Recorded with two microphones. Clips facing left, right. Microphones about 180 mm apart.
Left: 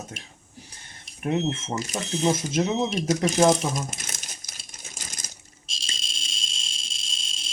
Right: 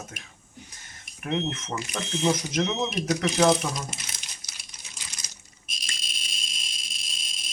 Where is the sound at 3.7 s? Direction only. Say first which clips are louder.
Left 4 dB; 45° left (ahead or behind).